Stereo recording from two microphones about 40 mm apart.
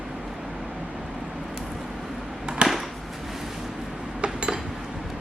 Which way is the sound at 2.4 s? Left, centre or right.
Right.